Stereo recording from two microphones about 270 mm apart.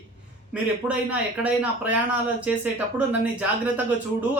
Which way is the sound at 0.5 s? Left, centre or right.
Centre.